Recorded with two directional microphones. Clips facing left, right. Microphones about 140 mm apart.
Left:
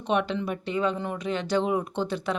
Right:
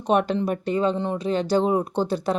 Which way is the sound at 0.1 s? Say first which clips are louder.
Right 5 dB; 40° right (ahead or behind).